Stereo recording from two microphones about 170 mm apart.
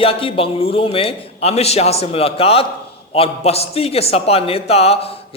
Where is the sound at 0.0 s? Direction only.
35° left (ahead or behind).